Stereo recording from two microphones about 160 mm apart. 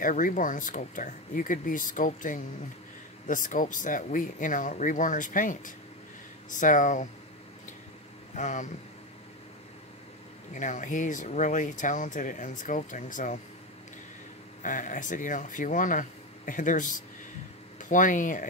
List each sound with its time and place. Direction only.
0.0 s speech: 55° left (ahead or behind)
8.4 s speech: 50° left (ahead or behind)
10.5 s speech: 50° left (ahead or behind)
14.6 s speech: 55° left (ahead or behind)